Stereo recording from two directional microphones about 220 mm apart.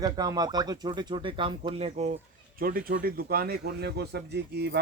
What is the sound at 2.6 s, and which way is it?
A man's voice, 40° right (ahead or behind).